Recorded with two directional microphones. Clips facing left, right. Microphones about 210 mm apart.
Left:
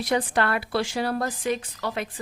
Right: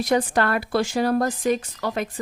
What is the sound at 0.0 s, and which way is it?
A woman's voice, 45° right (ahead or behind).